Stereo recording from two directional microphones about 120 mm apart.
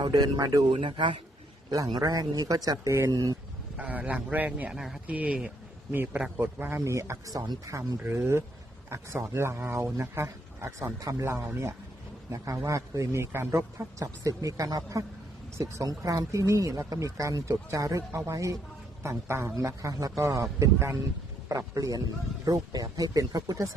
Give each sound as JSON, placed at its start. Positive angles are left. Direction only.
{"t": 0.0, "sound": "speech", "side_deg": -35}
{"t": 1.7, "sound": "speech", "side_deg": -30}
{"t": 3.8, "sound": "speech", "side_deg": -10}